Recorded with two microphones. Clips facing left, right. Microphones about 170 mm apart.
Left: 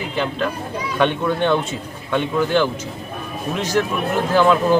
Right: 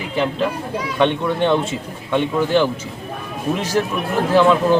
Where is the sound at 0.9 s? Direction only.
5° left (ahead or behind).